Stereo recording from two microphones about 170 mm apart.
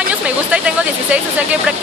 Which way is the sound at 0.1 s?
5° right (ahead or behind).